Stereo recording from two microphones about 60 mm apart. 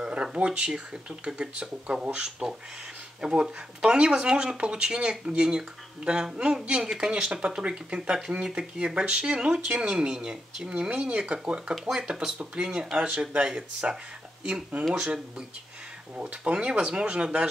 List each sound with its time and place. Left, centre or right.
0.0 s speech: centre
16.2 s speech: centre